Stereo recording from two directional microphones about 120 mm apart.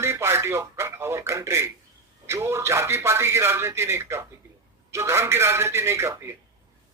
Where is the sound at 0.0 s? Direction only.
20° right (ahead or behind).